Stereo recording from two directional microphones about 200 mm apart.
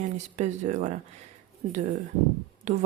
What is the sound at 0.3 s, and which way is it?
Speech, 35° right (ahead or behind).